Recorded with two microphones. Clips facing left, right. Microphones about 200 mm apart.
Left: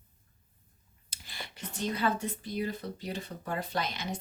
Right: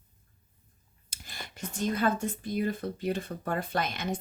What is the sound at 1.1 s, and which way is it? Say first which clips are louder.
Speech: right 1 dB; 45° right (ahead or behind).